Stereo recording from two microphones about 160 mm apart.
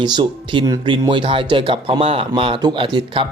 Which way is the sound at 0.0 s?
30° right (ahead or behind).